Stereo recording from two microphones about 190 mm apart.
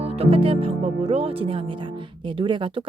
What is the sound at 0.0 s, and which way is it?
Speech, 30° right (ahead or behind).